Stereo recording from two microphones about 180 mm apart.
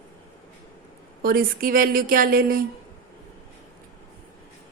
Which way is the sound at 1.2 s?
55° right (ahead or behind).